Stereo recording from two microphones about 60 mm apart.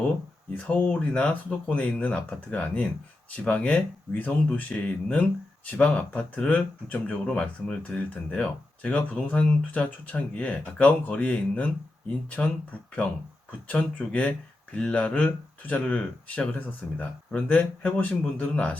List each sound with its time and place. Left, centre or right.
0.5 s speech: left
13.7 s speech: left